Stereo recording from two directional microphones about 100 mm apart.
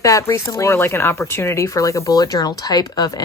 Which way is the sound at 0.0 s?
30° left (ahead or behind).